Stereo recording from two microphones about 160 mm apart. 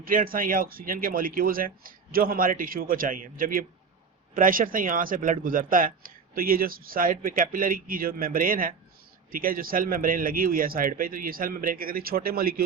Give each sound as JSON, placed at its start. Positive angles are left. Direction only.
{"t": 0.0, "sound": "speech", "side_deg": -60}